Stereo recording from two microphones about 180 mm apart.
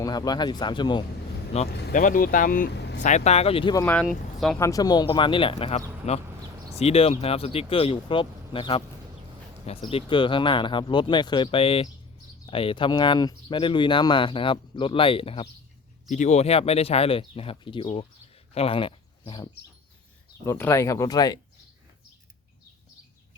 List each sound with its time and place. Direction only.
0.0 s speech: 20° left (ahead or behind)
1.5 s speech: 35° left (ahead or behind)
1.9 s speech: 45° left (ahead or behind); by 3.0 s 70° left (ahead or behind)
3.0 s speech: 40° left (ahead or behind)
3.8 s speech: 10° left (ahead or behind)
4.5 s speech: 20° left (ahead or behind)
16.0 s speech: 40° left (ahead or behind)
20.4 s speech: 15° left (ahead or behind)